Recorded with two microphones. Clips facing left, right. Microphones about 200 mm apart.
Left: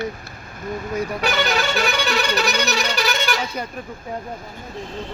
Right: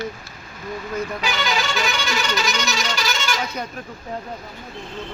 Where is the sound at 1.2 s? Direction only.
55° left (ahead or behind).